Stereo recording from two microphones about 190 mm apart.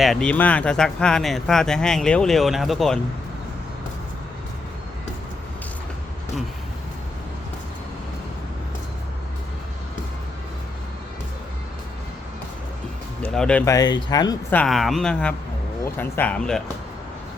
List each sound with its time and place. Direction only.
0.0 s speech: centre (ahead or behind)
13.2 s speech: 5° left (ahead or behind)
13.7 s speech: 20° left (ahead or behind)
14.5 s speech: 5° left (ahead or behind)